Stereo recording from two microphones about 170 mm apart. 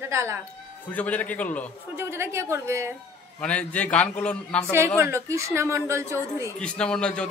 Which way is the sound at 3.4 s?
5° left (ahead or behind).